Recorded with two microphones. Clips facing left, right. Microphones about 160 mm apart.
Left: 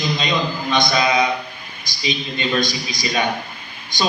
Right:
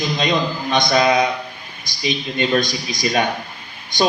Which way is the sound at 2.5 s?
50° right (ahead or behind).